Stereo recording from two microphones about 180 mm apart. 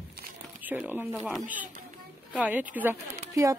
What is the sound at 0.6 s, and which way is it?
Speech, 10° right (ahead or behind).